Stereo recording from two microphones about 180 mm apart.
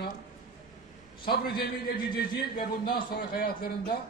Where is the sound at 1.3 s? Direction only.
55° left (ahead or behind).